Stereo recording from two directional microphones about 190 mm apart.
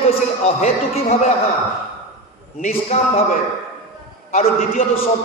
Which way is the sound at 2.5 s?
40° left (ahead or behind).